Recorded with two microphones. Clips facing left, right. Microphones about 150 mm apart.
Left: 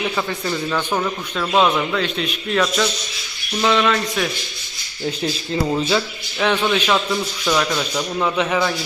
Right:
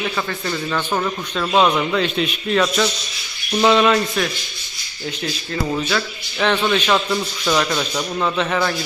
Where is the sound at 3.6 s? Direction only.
20° right (ahead or behind).